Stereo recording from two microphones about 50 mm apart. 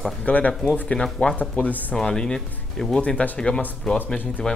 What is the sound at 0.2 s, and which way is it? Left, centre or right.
Speech, left.